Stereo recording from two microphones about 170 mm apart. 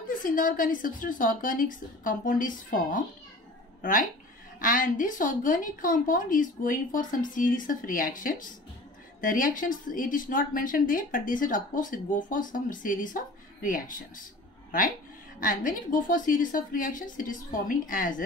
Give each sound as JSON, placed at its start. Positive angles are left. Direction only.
{"t": 0.2, "sound": "speech", "side_deg": 55}
{"t": 15.4, "sound": "speech", "side_deg": 50}